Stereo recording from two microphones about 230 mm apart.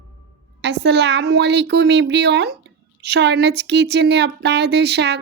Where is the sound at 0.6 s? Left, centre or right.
Right.